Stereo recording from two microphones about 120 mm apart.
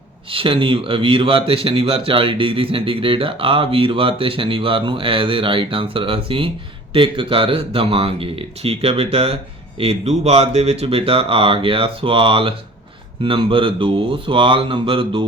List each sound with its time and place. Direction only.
0.3 s speech: 50° right (ahead or behind)